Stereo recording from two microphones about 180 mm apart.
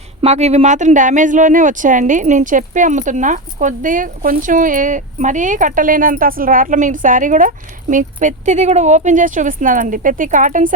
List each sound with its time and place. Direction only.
0.2 s speech: 35° right (ahead or behind)